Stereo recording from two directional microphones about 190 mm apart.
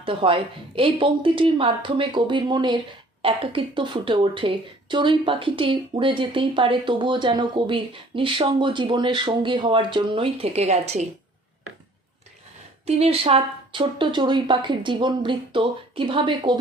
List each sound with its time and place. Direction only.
0.0 s a woman's voice: 30° right (ahead or behind)
12.8 s a woman's voice: 35° right (ahead or behind)